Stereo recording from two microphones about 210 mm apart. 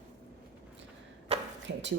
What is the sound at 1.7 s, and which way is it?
Speech, 55° right (ahead or behind).